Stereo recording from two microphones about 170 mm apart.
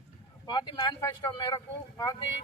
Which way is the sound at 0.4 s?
30° left (ahead or behind).